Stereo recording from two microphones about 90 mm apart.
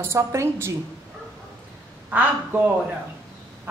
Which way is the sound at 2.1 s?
15° right (ahead or behind).